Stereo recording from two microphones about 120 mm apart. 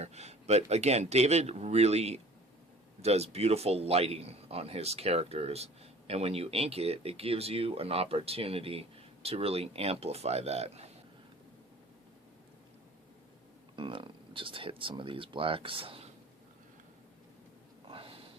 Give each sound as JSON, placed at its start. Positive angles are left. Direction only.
{"t": 0.0, "sound": "a man's voice", "side_deg": -65}
{"t": 13.7, "sound": "speech", "side_deg": -40}
{"t": 17.8, "sound": "a sound", "side_deg": -50}